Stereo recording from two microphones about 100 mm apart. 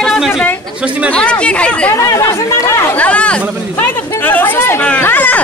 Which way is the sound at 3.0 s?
10° left (ahead or behind).